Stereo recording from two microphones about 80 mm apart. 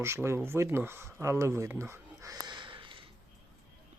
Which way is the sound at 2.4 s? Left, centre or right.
Right.